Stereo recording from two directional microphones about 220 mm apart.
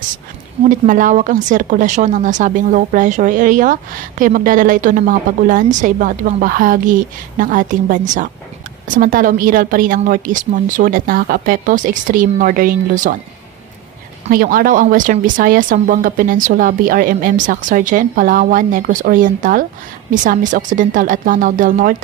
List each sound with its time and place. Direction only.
0.7 s speech: 35° right (ahead or behind)
14.2 s speech: 40° right (ahead or behind)